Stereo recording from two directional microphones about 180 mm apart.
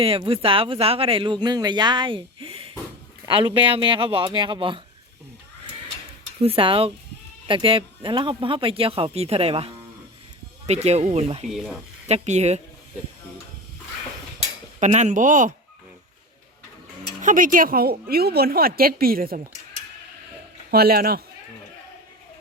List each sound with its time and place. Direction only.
0.0 s speech: 30° right (ahead or behind)
6.4 s speech: 30° right (ahead or behind)
11.5 s speech: centre (ahead or behind)
12.0 s speech: 40° right (ahead or behind)
14.8 s speech: 40° right (ahead or behind)
17.2 s speech: 45° right (ahead or behind)
20.7 s speech: 55° right (ahead or behind)